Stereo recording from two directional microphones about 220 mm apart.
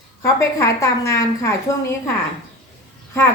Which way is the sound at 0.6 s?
15° left (ahead or behind).